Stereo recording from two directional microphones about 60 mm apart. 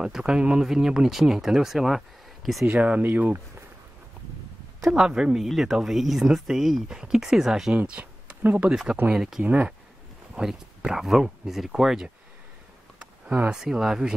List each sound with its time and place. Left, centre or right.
0.0 s speech: centre
2.6 s speech: right
4.8 s speech: centre
7.7 s a sound: right
8.4 s speech: right
8.6 s speech: centre
13.0 s a sound: right
13.5 s speech: centre